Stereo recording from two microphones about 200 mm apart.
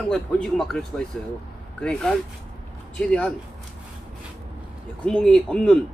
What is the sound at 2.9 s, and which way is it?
Speech, 5° left (ahead or behind).